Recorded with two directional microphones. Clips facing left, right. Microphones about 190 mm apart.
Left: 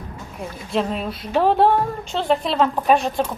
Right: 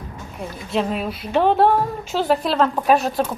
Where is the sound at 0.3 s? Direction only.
Centre (ahead or behind).